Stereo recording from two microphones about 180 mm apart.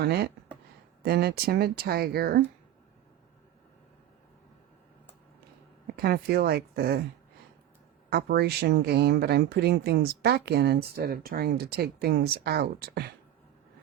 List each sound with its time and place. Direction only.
0.0 s speech: 65° right (ahead or behind)
5.9 s speech: 60° right (ahead or behind)
8.1 s speech: 60° right (ahead or behind)